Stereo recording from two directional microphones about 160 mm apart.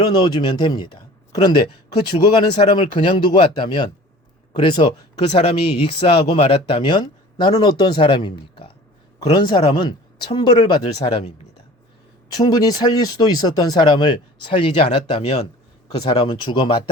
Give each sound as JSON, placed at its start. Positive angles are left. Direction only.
{"t": 0.0, "sound": "speech", "side_deg": 30}
{"t": 12.3, "sound": "speech", "side_deg": 25}